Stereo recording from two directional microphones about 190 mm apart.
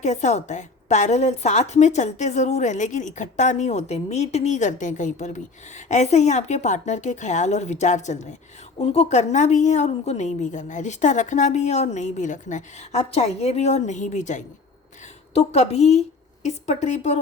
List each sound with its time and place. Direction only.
0.0 s a woman's voice: 40° left (ahead or behind)